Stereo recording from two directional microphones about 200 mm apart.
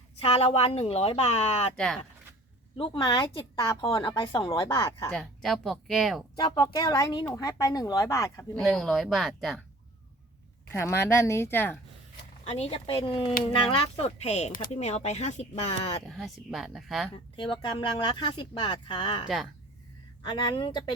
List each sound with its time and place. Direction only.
0.2 s speech: 30° left (ahead or behind)
1.7 s speech: 5° left (ahead or behind)
2.7 s a woman's voice: 25° left (ahead or behind)
5.1 s speech: centre (ahead or behind)
6.3 s a woman's voice: 20° left (ahead or behind)
8.5 s speech: centre (ahead or behind)
10.7 s speech: 10° left (ahead or behind)
12.5 s a woman's voice: 30° left (ahead or behind)
16.0 s speech: centre (ahead or behind)
17.3 s a woman's voice: 25° left (ahead or behind)